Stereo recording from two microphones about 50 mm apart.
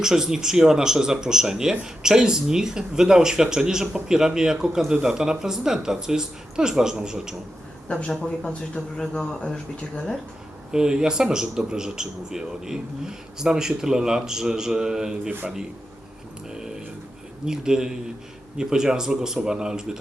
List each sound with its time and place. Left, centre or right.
0.0 s speech: centre
9.1 s speech: centre
10.7 s speech: centre
17.4 s speech: centre